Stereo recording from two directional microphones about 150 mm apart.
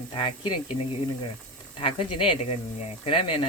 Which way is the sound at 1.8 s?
35° left (ahead or behind).